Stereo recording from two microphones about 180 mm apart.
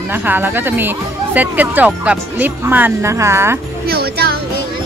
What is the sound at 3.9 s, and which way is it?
Speech, 60° right (ahead or behind).